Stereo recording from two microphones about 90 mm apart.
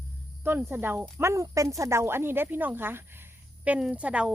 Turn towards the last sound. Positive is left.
turn(degrees=-15)  # may be behind; listen again after turning